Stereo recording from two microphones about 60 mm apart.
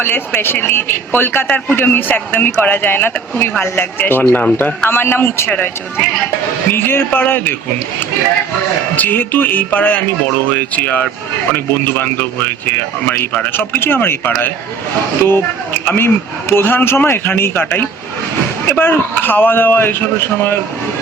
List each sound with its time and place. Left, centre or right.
0.0 s a man's voice: left
4.9 s a man's voice: left
5.5 s speech: left
6.7 s a man's voice: left
9.0 s a man's voice: left
13.1 s a man's voice: left